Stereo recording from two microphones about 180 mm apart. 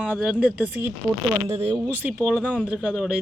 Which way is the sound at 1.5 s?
35° right (ahead or behind).